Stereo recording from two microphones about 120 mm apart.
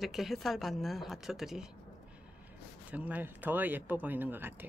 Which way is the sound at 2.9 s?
10° right (ahead or behind).